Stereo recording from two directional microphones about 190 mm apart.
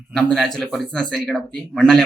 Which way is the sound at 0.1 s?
5° left (ahead or behind).